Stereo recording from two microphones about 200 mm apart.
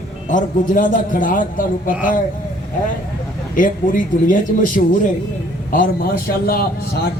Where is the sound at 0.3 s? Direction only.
40° left (ahead or behind).